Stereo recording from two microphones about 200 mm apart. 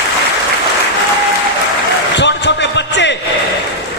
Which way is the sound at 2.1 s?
60° left (ahead or behind).